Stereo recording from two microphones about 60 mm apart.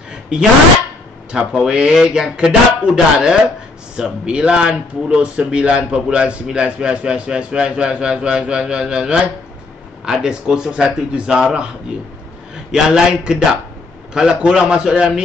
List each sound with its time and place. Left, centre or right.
0.1 s a sound: centre
1.4 s speech: centre
3.9 s speech: centre
12.7 s speech: centre